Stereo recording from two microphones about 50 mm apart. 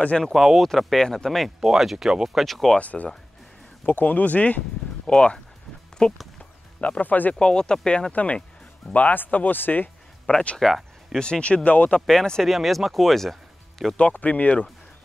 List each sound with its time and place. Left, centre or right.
0.3 s speech: centre
0.6 s speech: centre
1.6 s speech: centre
2.8 s speech: left
5.0 s speech: centre
6.8 s speech: left
7.3 s speech: centre
8.1 s speech: left
10.6 s a sound: centre
11.1 s speech: centre
12.1 s speech: centre
13.9 s speech: left